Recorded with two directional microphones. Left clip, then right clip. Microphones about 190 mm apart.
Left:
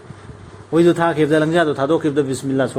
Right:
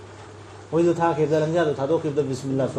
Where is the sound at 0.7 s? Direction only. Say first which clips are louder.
Left 5 dB; 60° left (ahead or behind).